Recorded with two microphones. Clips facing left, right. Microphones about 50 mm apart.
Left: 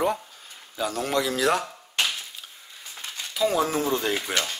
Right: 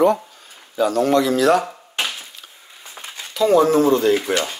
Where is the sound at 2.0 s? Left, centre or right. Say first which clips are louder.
Right 1 dB; centre.